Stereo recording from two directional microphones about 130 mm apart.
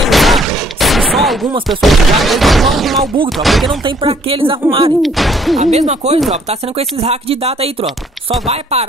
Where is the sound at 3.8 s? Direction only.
40° right (ahead or behind).